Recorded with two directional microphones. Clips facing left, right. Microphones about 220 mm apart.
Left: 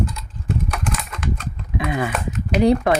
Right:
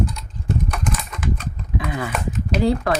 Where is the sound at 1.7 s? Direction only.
20° left (ahead or behind).